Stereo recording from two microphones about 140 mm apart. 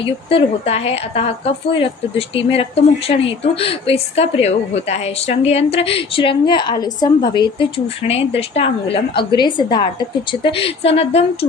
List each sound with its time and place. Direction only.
0.0 s a woman's voice: 40° left (ahead or behind)